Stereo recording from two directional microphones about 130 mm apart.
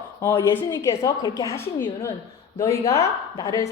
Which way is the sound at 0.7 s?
25° left (ahead or behind).